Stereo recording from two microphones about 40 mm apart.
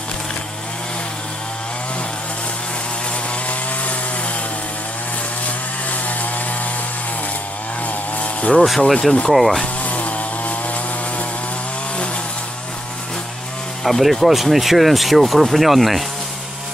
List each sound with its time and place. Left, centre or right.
3.4 s chainsaw: left
5.9 s chainsaw: left
7.8 s chainsaw: left
8.5 s speech: centre
9.8 s chainsaw: left
13.8 s speech: centre